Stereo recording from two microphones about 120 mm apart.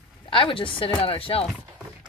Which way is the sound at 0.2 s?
45° left (ahead or behind).